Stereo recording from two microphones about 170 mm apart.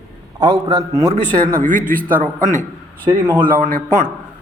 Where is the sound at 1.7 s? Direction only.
50° right (ahead or behind).